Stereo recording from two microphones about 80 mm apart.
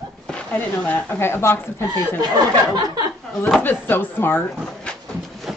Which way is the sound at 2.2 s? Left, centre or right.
Right.